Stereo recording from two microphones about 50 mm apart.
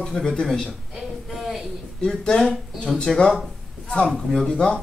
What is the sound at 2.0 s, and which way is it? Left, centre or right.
A man's voice, centre.